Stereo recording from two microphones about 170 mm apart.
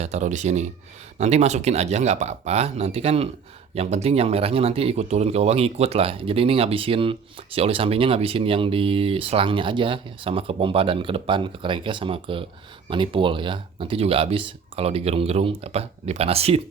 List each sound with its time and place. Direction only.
0.0 s speech: 45° right (ahead or behind)